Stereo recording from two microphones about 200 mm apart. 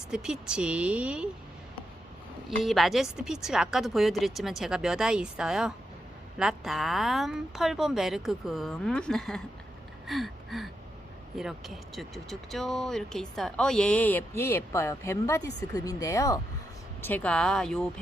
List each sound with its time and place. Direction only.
0.1 s speech: 5° right (ahead or behind)
2.6 s speech: centre (ahead or behind)
10.1 s gasp: centre (ahead or behind)
11.3 s speech: centre (ahead or behind)